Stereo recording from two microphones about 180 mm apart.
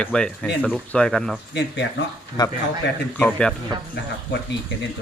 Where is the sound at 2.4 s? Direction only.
25° left (ahead or behind).